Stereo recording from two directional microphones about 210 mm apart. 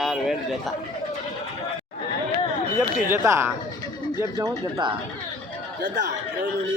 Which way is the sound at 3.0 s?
10° right (ahead or behind).